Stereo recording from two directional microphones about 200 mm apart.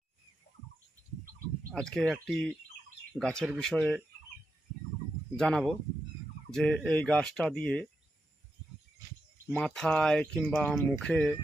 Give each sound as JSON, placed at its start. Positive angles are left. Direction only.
{"t": 1.7, "sound": "speech", "side_deg": 5}
{"t": 5.4, "sound": "speech", "side_deg": 0}
{"t": 9.5, "sound": "speech", "side_deg": 5}